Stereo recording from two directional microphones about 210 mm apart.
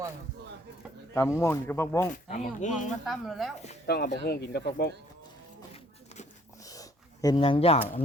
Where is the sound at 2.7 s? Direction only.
Centre (ahead or behind).